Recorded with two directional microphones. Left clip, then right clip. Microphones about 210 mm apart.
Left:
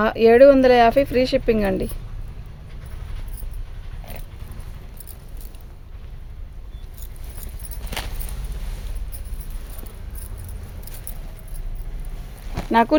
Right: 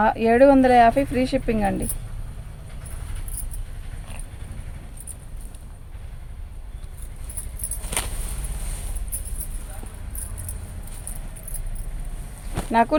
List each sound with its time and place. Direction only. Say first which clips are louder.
0.0 s speech: left 4 dB; 55° left (ahead or behind)
7.9 s a sound: right 1 dB; 5° right (ahead or behind)
12.7 s speech: left 2 dB; 45° left (ahead or behind)